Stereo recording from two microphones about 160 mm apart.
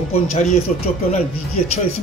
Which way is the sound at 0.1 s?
45° left (ahead or behind).